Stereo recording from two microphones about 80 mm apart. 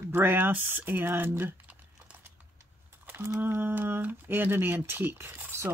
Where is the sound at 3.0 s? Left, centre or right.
Right.